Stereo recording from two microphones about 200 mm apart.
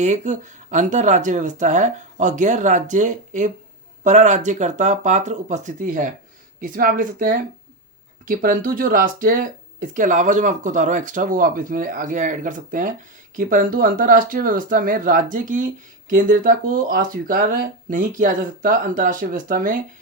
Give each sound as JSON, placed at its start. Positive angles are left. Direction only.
{"t": 0.0, "sound": "speech", "side_deg": -35}